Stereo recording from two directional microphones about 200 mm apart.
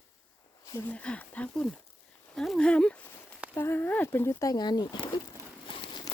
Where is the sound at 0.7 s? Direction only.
10° left (ahead or behind).